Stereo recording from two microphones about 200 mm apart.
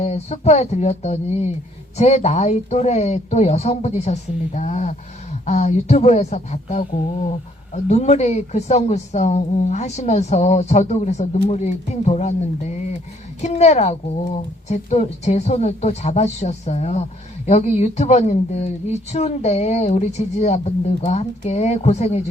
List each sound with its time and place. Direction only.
0.0 s speech: 35° left (ahead or behind)